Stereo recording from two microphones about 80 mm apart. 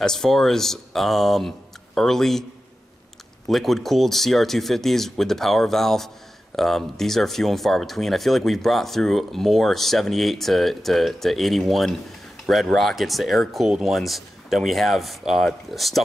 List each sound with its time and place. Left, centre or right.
0.0 s speech: centre
3.4 s speech: centre